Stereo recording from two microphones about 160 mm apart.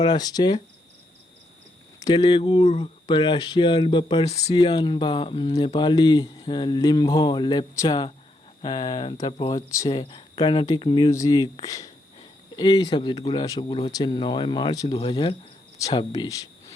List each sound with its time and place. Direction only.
0.0 s speech: 25° left (ahead or behind)
2.0 s speech: 25° left (ahead or behind); by 4.5 s 40° left (ahead or behind)
4.5 s speech: 30° left (ahead or behind)